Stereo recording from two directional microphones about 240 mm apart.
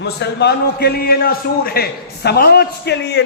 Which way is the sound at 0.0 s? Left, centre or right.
Left.